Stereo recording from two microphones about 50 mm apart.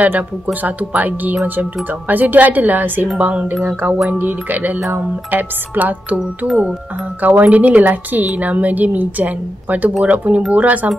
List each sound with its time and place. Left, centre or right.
0.0 s a woman's voice: right
6.1 s music: centre
7.2 s a woman's voice: right